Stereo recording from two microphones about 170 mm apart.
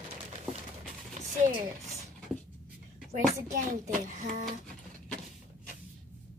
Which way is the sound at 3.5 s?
50° right (ahead or behind).